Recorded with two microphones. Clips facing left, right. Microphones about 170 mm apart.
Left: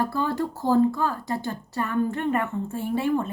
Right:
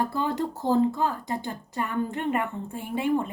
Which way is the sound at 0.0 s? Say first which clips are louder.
Left 1 dB; 20° right (ahead or behind).